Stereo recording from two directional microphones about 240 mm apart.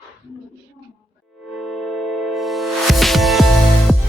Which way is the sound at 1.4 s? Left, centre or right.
Centre.